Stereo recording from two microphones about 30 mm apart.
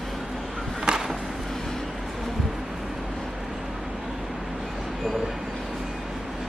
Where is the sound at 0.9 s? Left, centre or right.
Right.